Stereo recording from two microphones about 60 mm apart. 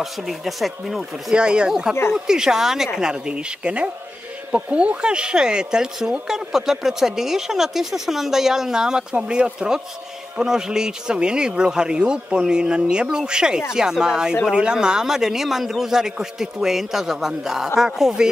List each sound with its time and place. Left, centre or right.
0.0 s speech: centre
1.3 s speech: centre